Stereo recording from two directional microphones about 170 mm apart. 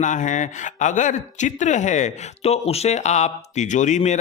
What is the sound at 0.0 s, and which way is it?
Speech, 45° left (ahead or behind).